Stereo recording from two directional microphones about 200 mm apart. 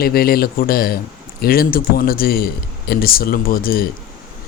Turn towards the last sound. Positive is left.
turn(degrees=45)  # may be behind; listen again after turning